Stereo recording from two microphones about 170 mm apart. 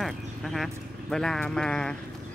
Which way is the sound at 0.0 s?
Centre (ahead or behind).